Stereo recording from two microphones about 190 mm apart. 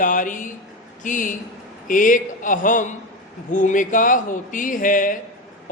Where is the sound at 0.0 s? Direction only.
45° left (ahead or behind).